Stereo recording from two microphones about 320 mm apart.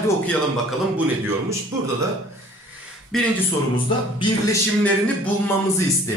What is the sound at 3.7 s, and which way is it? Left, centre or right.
Speech, centre.